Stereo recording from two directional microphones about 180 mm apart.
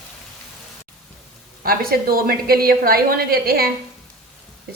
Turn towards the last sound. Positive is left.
turn(degrees=-55)  # may be behind; listen again after turning